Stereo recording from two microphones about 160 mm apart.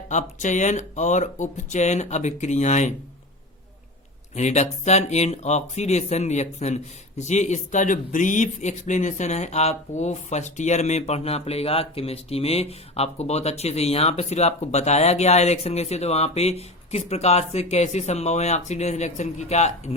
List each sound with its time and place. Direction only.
0.1 s speech: 50° left (ahead or behind)
4.4 s speech: 45° left (ahead or behind)